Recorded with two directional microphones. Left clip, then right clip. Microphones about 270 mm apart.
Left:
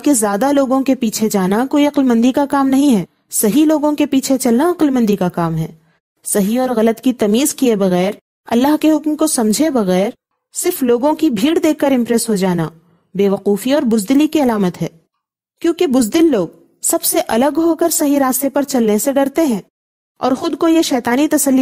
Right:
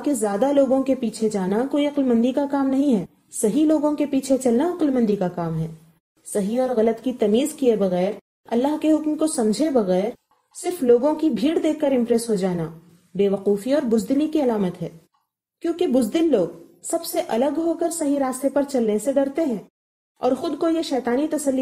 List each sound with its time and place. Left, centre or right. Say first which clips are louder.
0.0 s a woman's voice: left 7 dB; left